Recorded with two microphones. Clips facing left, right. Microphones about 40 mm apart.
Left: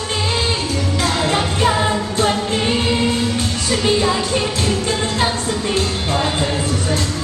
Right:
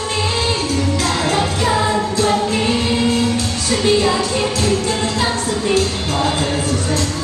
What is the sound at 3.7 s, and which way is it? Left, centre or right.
Music, left.